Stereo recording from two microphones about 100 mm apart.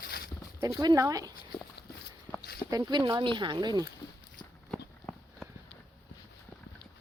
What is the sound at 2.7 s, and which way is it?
Speech, 40° right (ahead or behind).